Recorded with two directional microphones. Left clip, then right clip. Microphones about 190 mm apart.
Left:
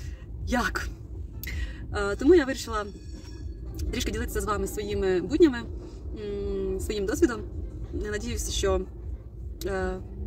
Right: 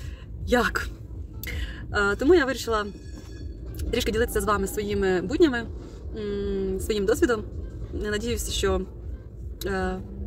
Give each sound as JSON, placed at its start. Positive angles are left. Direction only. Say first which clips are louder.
{"t": 0.5, "sound": "speech", "louder": "right 5 dB", "side_deg": 0}
{"t": 1.9, "sound": "speech", "louder": "right 2 dB", "side_deg": -5}
{"t": 3.9, "sound": "speech", "louder": "right 7 dB", "side_deg": -5}